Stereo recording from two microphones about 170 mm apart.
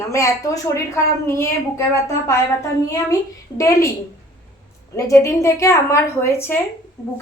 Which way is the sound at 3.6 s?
20° left (ahead or behind).